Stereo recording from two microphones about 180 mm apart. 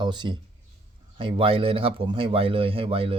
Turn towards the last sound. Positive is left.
turn(degrees=-30)  # may be behind; listen again after turning